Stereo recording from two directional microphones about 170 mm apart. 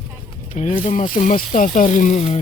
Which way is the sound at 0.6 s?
45° left (ahead or behind).